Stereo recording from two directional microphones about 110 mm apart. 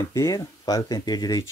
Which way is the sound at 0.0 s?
30° left (ahead or behind).